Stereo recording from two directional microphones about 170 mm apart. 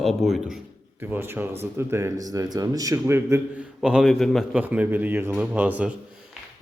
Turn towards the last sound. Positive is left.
turn(degrees=-5)  # may be behind; listen again after turning